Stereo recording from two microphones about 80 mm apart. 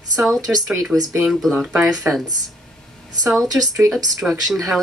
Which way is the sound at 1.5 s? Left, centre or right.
Centre.